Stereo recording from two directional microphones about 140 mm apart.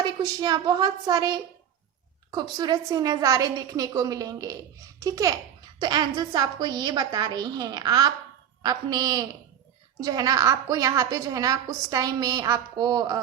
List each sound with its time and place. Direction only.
0.0 s a woman's voice: 30° right (ahead or behind)